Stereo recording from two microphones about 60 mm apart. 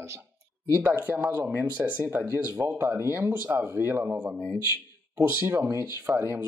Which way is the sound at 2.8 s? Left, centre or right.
Right.